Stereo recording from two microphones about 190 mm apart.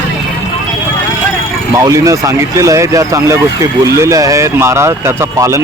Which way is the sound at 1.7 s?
15° right (ahead or behind).